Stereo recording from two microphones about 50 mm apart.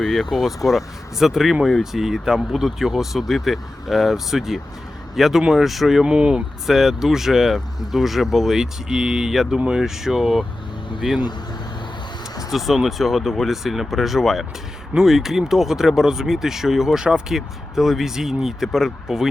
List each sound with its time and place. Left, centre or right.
0.1 s speech: centre
6.1 s speech: centre
6.7 s speech: centre
9.3 s speech: centre
12.5 s speech: centre